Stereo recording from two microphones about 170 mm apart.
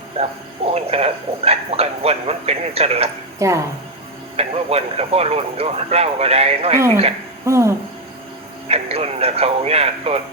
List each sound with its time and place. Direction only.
0.1 s speech: 35° right (ahead or behind)
3.3 s speech: 15° right (ahead or behind)
4.4 s speech: 35° right (ahead or behind)
7.4 s speech: 15° right (ahead or behind)
8.6 s radio: 35° right (ahead or behind)